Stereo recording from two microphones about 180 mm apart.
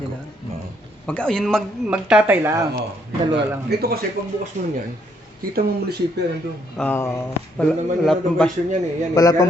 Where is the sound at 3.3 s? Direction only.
65° right (ahead or behind).